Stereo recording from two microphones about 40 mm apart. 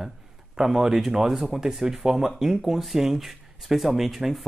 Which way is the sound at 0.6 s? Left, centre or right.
Centre.